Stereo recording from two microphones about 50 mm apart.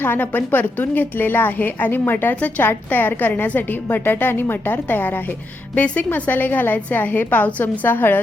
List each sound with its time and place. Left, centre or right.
0.0 s a woman's voice: left